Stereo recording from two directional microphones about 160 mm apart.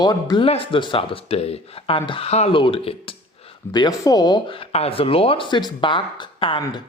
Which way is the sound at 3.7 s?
25° left (ahead or behind).